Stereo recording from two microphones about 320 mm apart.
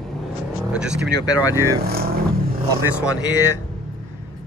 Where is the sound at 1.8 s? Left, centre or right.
Right.